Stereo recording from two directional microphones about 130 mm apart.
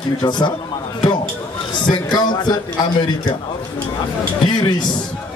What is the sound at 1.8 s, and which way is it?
A man's voice, 35° left (ahead or behind).